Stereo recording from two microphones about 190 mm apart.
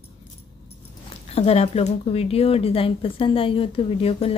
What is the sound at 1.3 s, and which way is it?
Speech, 30° left (ahead or behind).